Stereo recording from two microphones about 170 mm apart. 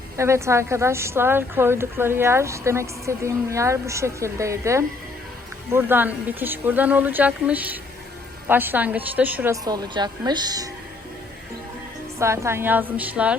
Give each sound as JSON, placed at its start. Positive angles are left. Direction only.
{"t": 0.2, "sound": "a woman's voice", "side_deg": -15}
{"t": 9.6, "sound": "speech", "side_deg": -25}
{"t": 12.2, "sound": "a woman's voice", "side_deg": -15}